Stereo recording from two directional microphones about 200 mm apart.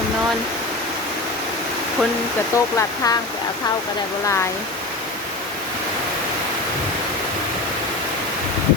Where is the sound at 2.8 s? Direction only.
15° left (ahead or behind).